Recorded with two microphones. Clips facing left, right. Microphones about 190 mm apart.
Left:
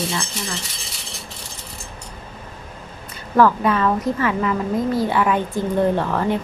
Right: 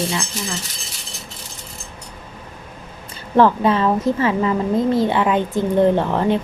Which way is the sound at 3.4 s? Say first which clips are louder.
Right 2 dB; 25° right (ahead or behind).